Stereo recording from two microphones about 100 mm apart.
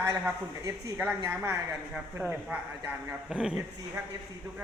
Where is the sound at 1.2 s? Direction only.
25° right (ahead or behind); by 3.5 s 10° right (ahead or behind).